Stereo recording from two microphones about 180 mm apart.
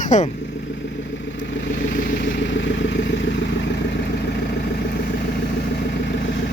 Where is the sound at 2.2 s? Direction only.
90° left.